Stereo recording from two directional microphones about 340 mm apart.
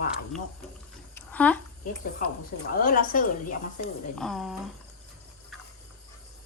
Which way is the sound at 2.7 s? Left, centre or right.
Left.